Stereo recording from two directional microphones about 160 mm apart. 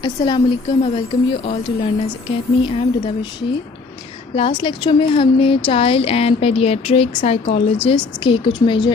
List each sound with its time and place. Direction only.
0.0 s a woman's voice: 30° left (ahead or behind)
4.4 s a woman's voice: 35° left (ahead or behind)